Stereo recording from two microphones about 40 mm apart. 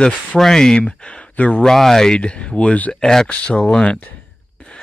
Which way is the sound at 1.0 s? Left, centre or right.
Left.